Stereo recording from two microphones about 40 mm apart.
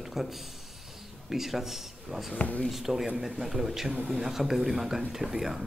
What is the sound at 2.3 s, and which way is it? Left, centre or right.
Speech, left.